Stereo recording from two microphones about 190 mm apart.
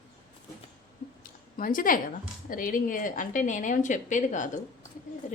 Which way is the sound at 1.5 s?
45° left (ahead or behind).